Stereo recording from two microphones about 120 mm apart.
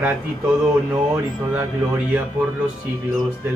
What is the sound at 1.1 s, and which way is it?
Speech, 15° right (ahead or behind).